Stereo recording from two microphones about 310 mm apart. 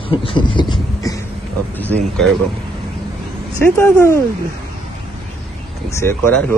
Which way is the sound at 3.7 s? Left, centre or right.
Centre.